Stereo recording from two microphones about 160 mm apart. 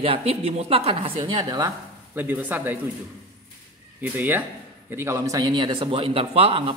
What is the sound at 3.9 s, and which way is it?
A man's voice, 10° right (ahead or behind).